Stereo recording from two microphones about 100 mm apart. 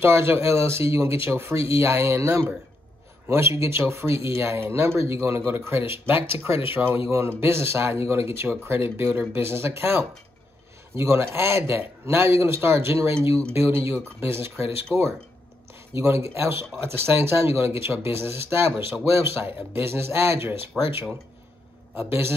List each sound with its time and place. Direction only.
0.0 s a man's voice: 25° right (ahead or behind)
15.9 s a man's voice: 30° right (ahead or behind)